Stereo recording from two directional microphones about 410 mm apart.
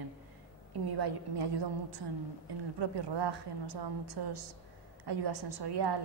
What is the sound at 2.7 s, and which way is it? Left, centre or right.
A woman's voice, right.